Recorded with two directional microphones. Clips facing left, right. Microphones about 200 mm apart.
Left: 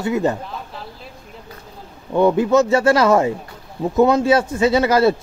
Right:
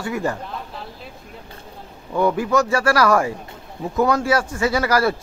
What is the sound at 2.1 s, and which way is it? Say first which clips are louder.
Speech: left 4 dB; 25° left (ahead or behind).